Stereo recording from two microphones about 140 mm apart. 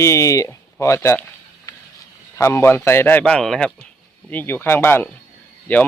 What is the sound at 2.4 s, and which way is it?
A man's voice, 20° left (ahead or behind).